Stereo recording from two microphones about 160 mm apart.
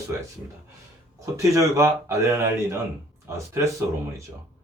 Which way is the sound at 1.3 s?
20° right (ahead or behind).